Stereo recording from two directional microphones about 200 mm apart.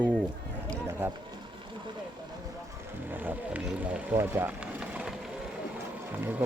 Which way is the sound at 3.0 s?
10° right (ahead or behind).